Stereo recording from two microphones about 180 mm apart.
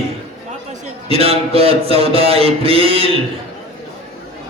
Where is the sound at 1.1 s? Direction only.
35° right (ahead or behind).